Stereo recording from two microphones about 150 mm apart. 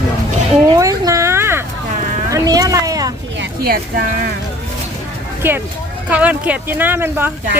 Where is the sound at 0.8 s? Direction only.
20° right (ahead or behind).